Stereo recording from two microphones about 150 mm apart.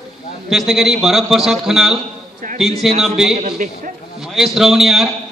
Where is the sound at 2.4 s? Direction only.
65° right (ahead or behind).